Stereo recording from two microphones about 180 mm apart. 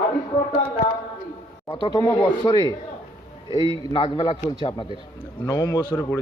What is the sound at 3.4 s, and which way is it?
Speech, 25° right (ahead or behind).